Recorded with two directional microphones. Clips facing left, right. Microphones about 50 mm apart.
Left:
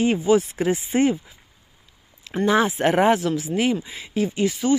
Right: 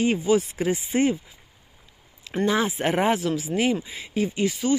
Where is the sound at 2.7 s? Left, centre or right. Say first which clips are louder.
Left 4 dB; centre.